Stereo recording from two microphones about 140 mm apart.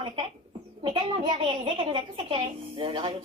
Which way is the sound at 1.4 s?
35° right (ahead or behind).